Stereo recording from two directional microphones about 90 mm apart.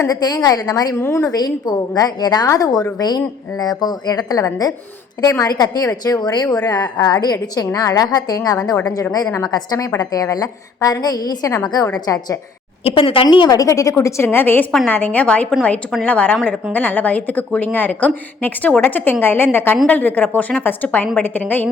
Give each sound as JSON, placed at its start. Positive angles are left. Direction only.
{"t": 0.0, "sound": "a woman's voice", "side_deg": 45}
{"t": 0.9, "sound": "speech", "side_deg": 30}
{"t": 1.3, "sound": "a woman's voice", "side_deg": 45}
{"t": 2.5, "sound": "a woman's voice", "side_deg": 35}
{"t": 13.0, "sound": "speech", "side_deg": 85}
{"t": 13.5, "sound": "a woman's voice", "side_deg": 40}
{"t": 14.0, "sound": "a woman's voice", "side_deg": 25}